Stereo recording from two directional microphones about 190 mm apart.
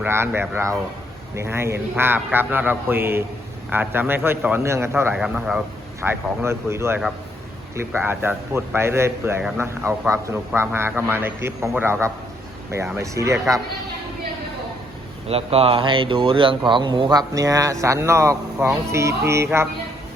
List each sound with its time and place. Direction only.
0.0 s a man's voice: 10° right (ahead or behind)
6.0 s a man's voice: 15° right (ahead or behind)
15.3 s speech: 30° right (ahead or behind); by 19.6 s 15° right (ahead or behind)